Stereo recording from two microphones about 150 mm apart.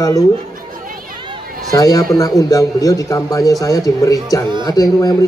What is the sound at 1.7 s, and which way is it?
A man's voice, 25° left (ahead or behind).